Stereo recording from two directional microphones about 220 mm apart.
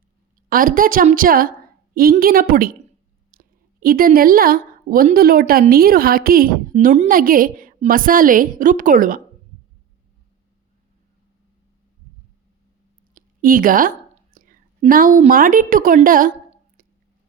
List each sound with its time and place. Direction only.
0.5 s a woman's voice: 40° right (ahead or behind)
13.1 s a woman's voice: 40° right (ahead or behind)